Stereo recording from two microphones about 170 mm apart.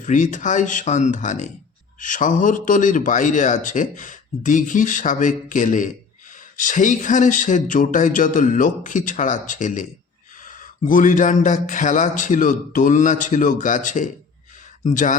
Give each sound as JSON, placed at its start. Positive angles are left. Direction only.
{"t": 0.0, "sound": "a man's voice", "side_deg": 50}